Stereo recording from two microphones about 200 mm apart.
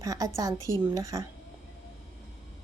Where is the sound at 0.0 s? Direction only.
15° right (ahead or behind).